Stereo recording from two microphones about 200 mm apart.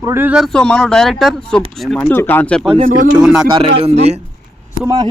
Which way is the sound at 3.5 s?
30° right (ahead or behind).